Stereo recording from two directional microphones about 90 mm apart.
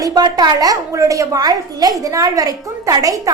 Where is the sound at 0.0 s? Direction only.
45° right (ahead or behind).